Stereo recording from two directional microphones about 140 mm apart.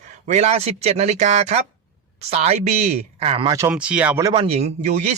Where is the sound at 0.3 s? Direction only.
55° right (ahead or behind).